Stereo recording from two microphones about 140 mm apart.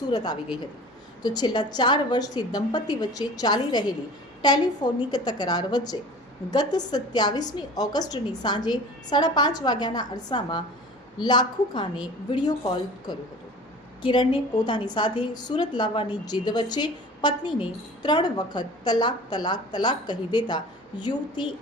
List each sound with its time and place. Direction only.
0.1 s a woman's voice: 30° left (ahead or behind)
14.0 s a woman's voice: 35° left (ahead or behind)